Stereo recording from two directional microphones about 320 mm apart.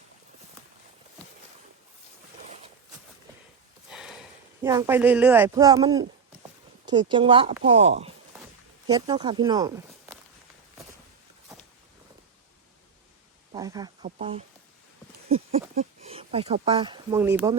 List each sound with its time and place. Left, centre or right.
3.8 s a sound: centre
4.6 s speech: centre
13.5 s speech: centre
15.7 s speech: right